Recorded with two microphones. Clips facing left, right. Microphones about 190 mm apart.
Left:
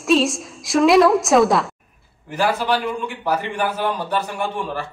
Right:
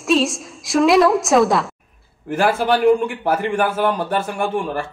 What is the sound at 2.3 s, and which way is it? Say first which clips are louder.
A man's voice: right 3 dB; 50° right (ahead or behind).